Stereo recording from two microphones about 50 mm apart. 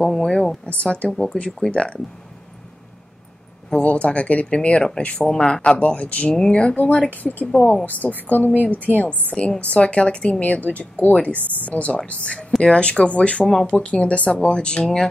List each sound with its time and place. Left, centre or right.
0.0 s speech: centre
0.7 s speech: left
1.1 s speech: centre
1.7 s speech: left
3.7 s speech: left
5.3 s speech: centre
5.6 s speech: left
6.8 s a woman's voice: left; by 15.0 s centre